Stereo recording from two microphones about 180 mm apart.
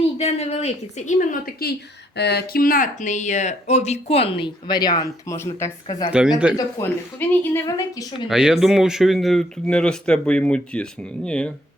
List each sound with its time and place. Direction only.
0.2 s speech: 35° left (ahead or behind); by 1.7 s 50° left (ahead or behind)
2.1 s speech: 65° left (ahead or behind); by 5.7 s 15° left (ahead or behind)
6.1 s speech: 5° right (ahead or behind)
6.6 s a woman's voice: 15° left (ahead or behind)
8.3 s speech: 5° right (ahead or behind)